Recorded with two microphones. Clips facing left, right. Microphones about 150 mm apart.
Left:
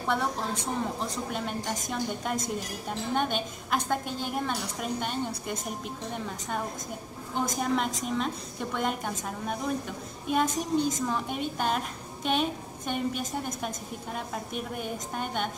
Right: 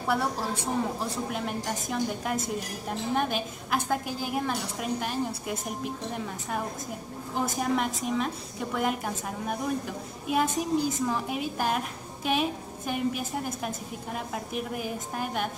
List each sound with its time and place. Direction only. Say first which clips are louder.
0.0 s a woman's voice: right 1 dB; 5° right (ahead or behind)